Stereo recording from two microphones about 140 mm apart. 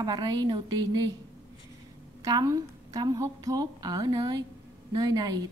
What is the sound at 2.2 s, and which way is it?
A woman's voice, 25° right (ahead or behind).